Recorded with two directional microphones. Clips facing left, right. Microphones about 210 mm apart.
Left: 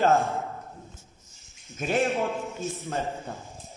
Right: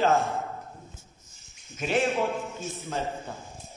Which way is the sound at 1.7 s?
50° left (ahead or behind).